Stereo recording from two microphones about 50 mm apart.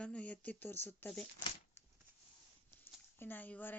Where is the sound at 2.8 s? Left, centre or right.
Left.